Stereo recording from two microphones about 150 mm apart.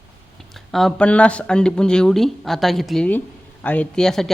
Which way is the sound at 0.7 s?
Centre (ahead or behind).